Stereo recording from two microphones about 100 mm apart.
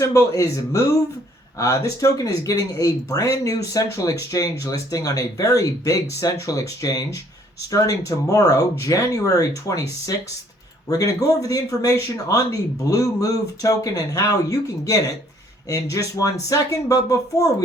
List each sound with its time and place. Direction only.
0.0 s speech: 30° left (ahead or behind)
10.8 s speech: 35° left (ahead or behind)